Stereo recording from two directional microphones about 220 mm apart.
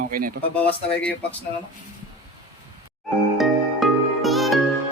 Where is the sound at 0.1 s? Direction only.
40° right (ahead or behind).